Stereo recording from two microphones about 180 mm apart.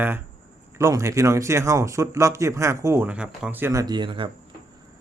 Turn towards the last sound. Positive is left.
turn(degrees=-25)  # may be behind; listen again after turning